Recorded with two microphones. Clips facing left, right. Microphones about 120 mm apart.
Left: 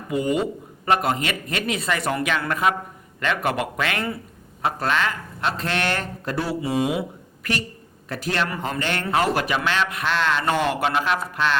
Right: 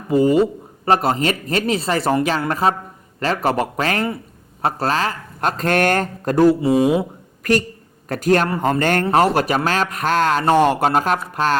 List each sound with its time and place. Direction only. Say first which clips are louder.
0.1 s speech: right 8 dB; 35° right (ahead or behind)